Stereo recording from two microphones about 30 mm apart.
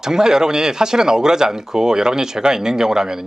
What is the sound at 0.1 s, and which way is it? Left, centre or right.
Speech, right.